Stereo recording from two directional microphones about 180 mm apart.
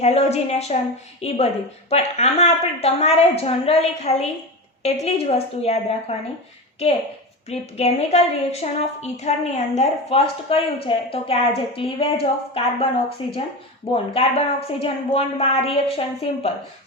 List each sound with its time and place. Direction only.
0.0 s a woman's voice: 35° left (ahead or behind)
7.5 s a woman's voice: 35° left (ahead or behind)